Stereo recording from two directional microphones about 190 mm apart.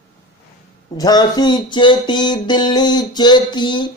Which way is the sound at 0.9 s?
20° left (ahead or behind).